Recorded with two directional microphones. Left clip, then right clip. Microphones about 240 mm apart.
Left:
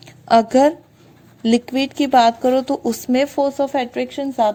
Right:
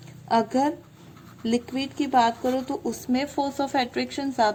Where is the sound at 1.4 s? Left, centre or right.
Left.